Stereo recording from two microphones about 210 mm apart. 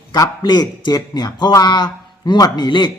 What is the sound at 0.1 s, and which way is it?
A man's voice, 20° left (ahead or behind).